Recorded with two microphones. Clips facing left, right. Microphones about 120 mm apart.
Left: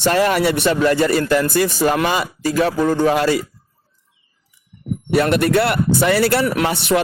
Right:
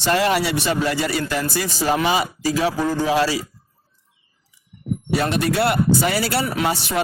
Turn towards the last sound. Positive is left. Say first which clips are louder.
# left 5 dB
turn(degrees=65)  # may be behind; listen again after turning